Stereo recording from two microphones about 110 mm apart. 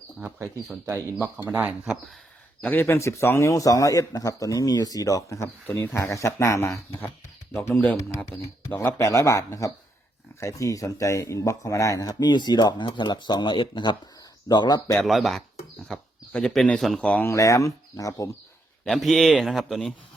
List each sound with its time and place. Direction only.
0.9 s speech: 25° right (ahead or behind)
1.8 s a man's voice: 5° right (ahead or behind)
2.6 s speech: 20° left (ahead or behind)
8.7 s speech: 20° left (ahead or behind); by 14.9 s 40° left (ahead or behind)
15.0 s a man's voice: centre (ahead or behind)
17.2 s speech: 30° left (ahead or behind)
18.9 s a man's voice: centre (ahead or behind)